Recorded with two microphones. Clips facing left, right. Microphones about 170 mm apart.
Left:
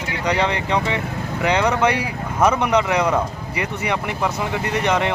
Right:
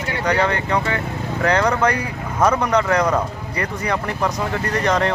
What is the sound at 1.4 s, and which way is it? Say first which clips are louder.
Speech: even; 10° left (ahead or behind).